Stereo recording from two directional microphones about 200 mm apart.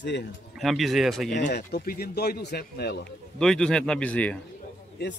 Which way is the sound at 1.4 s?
50° left (ahead or behind).